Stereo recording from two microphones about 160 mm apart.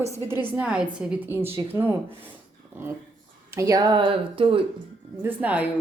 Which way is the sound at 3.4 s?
20° right (ahead or behind).